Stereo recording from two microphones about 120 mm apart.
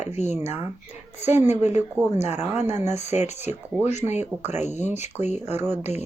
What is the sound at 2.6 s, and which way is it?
Speech, 70° left (ahead or behind).